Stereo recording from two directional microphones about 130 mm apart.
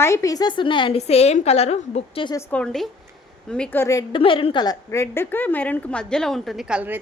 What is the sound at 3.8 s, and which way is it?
Speech, 25° left (ahead or behind).